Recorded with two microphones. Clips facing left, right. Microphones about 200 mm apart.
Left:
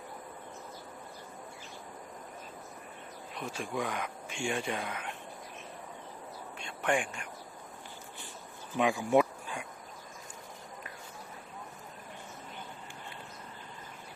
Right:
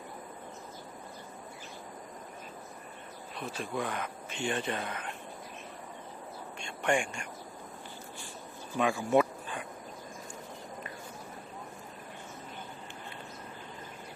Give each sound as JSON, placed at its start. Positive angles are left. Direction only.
{"t": 3.3, "sound": "speech", "side_deg": 15}
{"t": 6.6, "sound": "a sound", "side_deg": 5}
{"t": 8.8, "sound": "dog", "side_deg": 15}